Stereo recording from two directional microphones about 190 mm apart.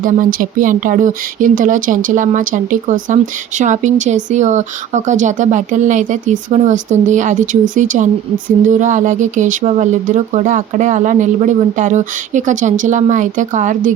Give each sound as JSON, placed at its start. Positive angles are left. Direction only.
{"t": 0.0, "sound": "speech", "side_deg": -45}